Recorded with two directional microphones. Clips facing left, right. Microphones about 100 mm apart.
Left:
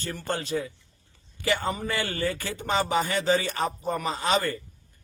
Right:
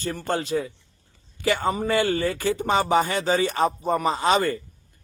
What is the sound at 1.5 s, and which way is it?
Speech, 25° right (ahead or behind).